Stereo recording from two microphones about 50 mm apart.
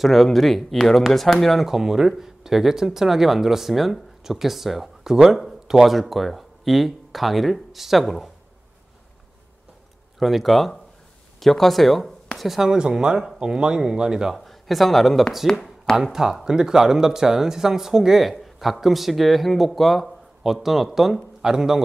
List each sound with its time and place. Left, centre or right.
0.0 s speech: centre
10.1 s speech: centre
14.3 s speech: centre
15.5 s speech: centre
16.0 s speech: centre